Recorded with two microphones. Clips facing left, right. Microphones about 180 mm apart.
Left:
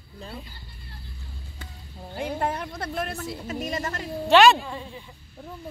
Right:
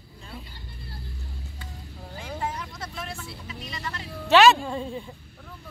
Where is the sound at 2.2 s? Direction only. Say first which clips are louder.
Left 5 dB; 60° left (ahead or behind).